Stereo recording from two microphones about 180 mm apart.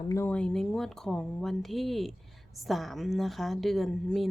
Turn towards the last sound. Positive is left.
turn(degrees=0)  # may be behind; listen again after turning